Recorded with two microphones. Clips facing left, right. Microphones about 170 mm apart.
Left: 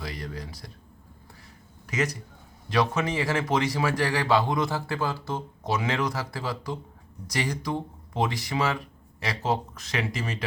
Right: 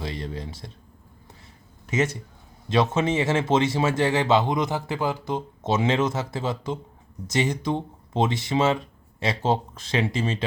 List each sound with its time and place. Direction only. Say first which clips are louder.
0.0 s speech: right 4 dB; 25° right (ahead or behind)
1.9 s a man's voice: right 4 dB; 25° right (ahead or behind)